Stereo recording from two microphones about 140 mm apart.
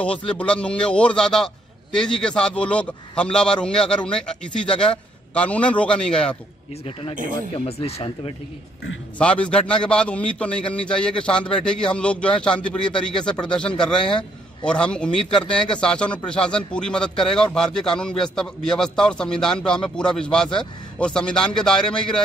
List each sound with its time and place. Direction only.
0.3 s a man's voice: 5° left (ahead or behind)
7.2 s speech: 75° right (ahead or behind)
7.5 s speech: 45° left (ahead or behind)
9.2 s a man's voice: 10° left (ahead or behind)